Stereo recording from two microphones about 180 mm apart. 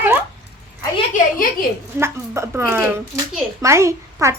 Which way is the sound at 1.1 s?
50° left (ahead or behind).